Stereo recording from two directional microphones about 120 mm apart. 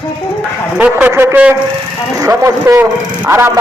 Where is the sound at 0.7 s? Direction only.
15° right (ahead or behind).